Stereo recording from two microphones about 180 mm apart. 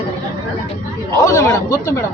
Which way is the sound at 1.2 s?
15° left (ahead or behind).